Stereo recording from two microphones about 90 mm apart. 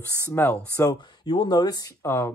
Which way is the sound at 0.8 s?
50° left (ahead or behind).